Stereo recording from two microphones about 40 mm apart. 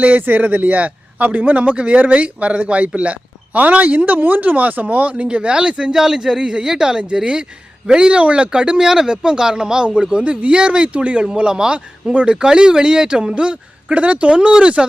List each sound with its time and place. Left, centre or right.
0.2 s speech: right
0.4 s a man's voice: right
8.8 s speech: centre
11.7 s speech: right